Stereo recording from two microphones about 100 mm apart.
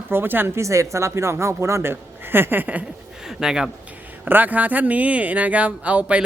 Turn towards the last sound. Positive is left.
turn(degrees=-15)  # may be behind; listen again after turning